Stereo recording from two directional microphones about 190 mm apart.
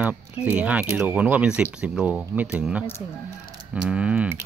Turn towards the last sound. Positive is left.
turn(degrees=-5)  # may be behind; listen again after turning